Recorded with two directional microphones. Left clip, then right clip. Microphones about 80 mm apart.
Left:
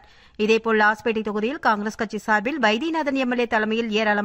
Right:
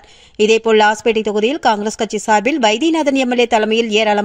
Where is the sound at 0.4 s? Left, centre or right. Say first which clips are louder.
Right 8 dB; right.